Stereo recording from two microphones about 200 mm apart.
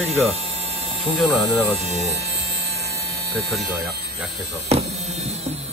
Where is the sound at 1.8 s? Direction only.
35° right (ahead or behind).